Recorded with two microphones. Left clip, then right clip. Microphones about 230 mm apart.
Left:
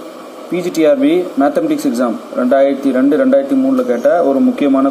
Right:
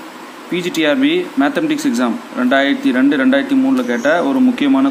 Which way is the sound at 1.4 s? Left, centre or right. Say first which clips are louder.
Left 2 dB; centre.